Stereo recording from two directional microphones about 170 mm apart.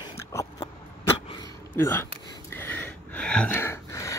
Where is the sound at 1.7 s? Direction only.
15° left (ahead or behind).